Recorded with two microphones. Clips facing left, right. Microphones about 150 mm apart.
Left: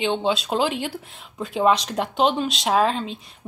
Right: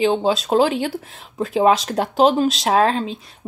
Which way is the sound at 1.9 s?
40° right (ahead or behind).